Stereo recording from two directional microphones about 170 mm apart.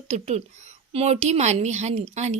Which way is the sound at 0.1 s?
40° right (ahead or behind).